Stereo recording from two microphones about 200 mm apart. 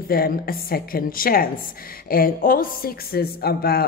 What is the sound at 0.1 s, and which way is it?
Speech, 50° left (ahead or behind).